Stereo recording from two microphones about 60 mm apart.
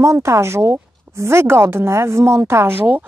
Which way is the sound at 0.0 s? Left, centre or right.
Right.